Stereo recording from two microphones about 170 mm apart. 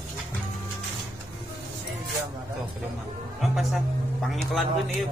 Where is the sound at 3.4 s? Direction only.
Centre (ahead or behind).